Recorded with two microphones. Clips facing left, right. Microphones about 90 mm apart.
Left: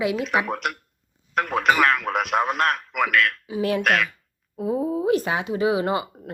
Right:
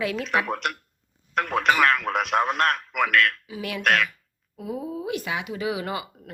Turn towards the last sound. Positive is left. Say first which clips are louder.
# left 7 dB
turn(degrees=30)  # may be behind; listen again after turning